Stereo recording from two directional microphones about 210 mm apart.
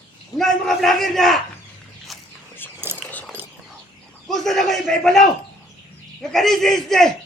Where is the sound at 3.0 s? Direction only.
5° left (ahead or behind).